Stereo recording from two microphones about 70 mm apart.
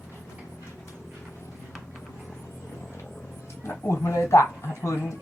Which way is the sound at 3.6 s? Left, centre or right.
Left.